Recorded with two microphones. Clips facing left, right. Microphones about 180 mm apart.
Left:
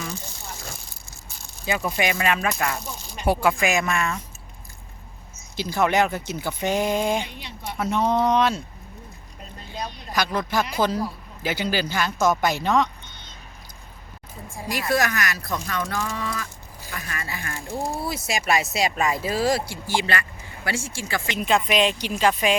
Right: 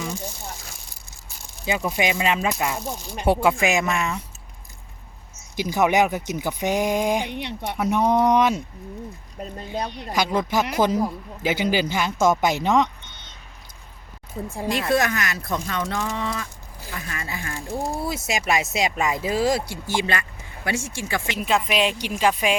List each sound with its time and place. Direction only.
1.6 s speech: 15° right (ahead or behind)
5.5 s speech: 15° right (ahead or behind)
7.3 s speech: 65° right (ahead or behind)
7.8 s speech: 15° right (ahead or behind)
9.7 s speech: 60° right (ahead or behind)
10.1 s speech: 20° right (ahead or behind)
14.7 s speech: 25° right (ahead or behind)
21.2 s speech: 5° right (ahead or behind)